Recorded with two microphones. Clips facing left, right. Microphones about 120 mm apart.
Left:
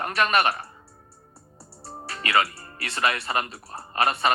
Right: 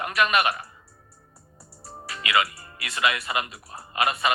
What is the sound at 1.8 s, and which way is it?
Speech, 35° left (ahead or behind).